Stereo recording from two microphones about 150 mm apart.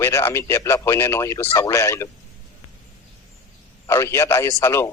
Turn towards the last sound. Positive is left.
turn(degrees=20)  # may be behind; listen again after turning